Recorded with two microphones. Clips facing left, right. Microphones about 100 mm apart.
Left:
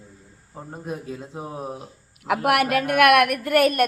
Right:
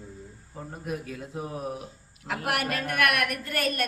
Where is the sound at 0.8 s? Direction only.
25° left (ahead or behind).